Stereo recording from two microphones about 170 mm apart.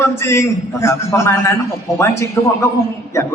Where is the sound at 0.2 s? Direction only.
15° left (ahead or behind).